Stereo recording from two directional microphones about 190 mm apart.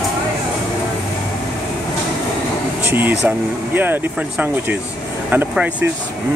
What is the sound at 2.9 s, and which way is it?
Speech, 10° right (ahead or behind).